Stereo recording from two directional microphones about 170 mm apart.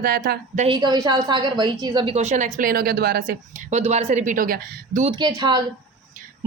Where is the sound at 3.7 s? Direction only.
40° right (ahead or behind); by 4.6 s 55° right (ahead or behind).